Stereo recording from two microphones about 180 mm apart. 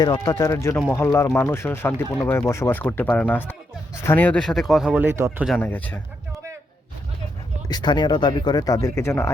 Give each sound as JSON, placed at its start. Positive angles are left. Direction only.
{"t": 0.0, "sound": "speech", "side_deg": 20}
{"t": 5.5, "sound": "speech", "side_deg": 10}
{"t": 7.7, "sound": "speech", "side_deg": 25}